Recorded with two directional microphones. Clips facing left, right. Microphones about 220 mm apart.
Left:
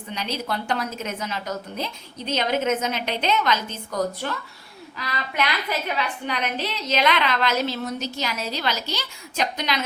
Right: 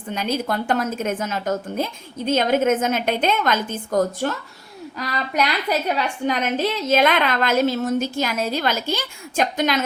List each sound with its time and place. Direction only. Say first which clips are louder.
0.1 s a woman's voice: right 5 dB; 50° right (ahead or behind)